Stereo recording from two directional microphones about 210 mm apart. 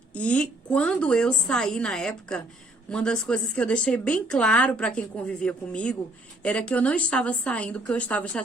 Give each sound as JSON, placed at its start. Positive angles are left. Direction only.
{"t": 0.1, "sound": "speech", "side_deg": 5}